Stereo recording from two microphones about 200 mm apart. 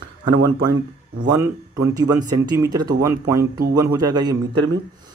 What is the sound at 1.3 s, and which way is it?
Speech, 15° right (ahead or behind).